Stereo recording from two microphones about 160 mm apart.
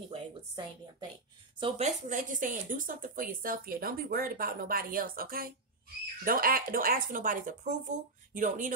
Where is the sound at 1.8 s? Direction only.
55° right (ahead or behind).